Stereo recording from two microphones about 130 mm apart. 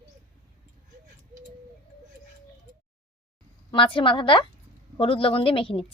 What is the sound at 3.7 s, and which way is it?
A woman's voice, 40° left (ahead or behind).